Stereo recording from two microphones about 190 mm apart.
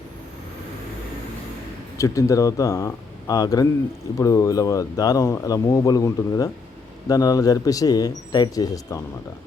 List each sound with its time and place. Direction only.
2.0 s speech: 15° left (ahead or behind)